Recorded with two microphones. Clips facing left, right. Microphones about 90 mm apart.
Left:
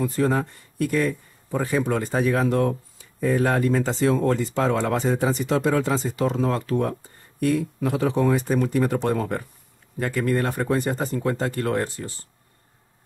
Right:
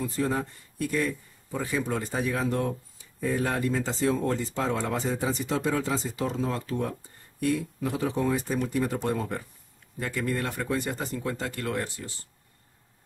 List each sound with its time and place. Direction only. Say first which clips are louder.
0.0 s speech: left 6 dB; 65° left (ahead or behind); by 12.1 s 45° left (ahead or behind)